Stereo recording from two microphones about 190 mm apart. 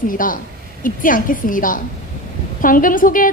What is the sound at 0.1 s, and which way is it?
A woman's voice, 45° left (ahead or behind).